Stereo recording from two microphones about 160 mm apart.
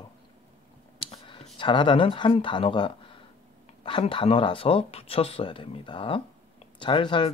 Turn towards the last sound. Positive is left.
turn(degrees=30)  # may be behind; listen again after turning